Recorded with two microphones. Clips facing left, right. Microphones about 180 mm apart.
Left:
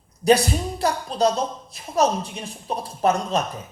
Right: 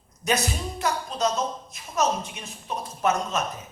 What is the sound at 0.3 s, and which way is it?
Speech, 35° left (ahead or behind).